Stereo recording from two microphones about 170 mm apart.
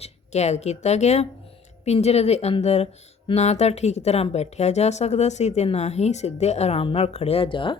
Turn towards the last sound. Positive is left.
turn(degrees=30)  # may be behind; listen again after turning